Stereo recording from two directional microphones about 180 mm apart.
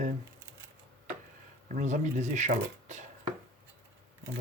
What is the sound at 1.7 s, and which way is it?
Speech, 45° right (ahead or behind).